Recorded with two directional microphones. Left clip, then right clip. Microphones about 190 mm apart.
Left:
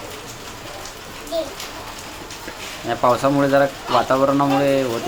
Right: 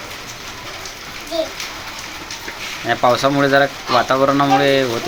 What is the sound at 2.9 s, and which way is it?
Speech, 5° right (ahead or behind).